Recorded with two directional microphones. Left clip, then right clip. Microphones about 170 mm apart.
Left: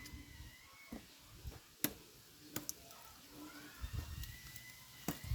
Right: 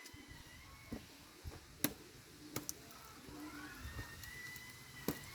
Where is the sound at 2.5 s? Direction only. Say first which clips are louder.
Even; 15° right (ahead or behind).